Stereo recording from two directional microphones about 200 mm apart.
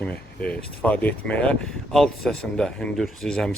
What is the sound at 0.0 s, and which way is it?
Speech, 5° left (ahead or behind).